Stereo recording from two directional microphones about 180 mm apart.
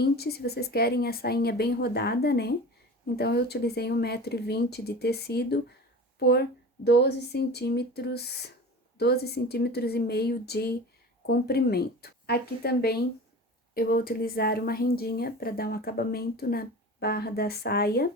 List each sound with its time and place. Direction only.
0.0 s speech: 60° left (ahead or behind)